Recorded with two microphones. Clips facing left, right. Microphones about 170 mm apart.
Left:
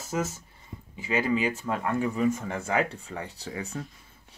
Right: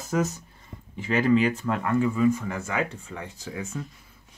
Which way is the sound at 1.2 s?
10° left (ahead or behind).